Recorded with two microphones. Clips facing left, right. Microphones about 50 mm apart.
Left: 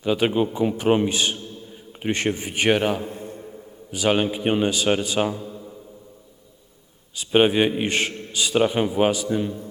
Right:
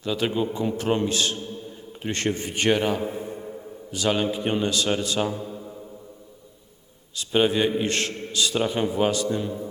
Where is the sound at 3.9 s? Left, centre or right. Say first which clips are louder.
Left 3 dB; centre.